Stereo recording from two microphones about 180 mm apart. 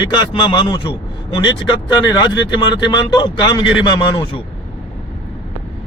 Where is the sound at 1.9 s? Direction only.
25° left (ahead or behind).